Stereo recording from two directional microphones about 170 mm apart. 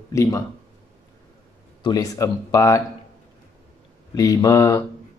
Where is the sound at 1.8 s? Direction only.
20° left (ahead or behind).